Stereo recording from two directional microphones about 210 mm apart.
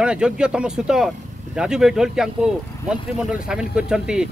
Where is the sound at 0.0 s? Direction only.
5° right (ahead or behind).